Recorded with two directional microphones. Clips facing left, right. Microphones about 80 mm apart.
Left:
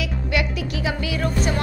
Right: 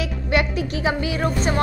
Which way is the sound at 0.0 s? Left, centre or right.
Right.